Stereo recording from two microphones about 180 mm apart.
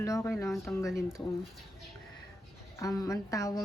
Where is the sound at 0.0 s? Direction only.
15° left (ahead or behind).